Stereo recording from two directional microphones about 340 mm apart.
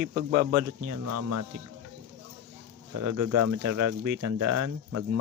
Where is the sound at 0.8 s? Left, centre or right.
Right.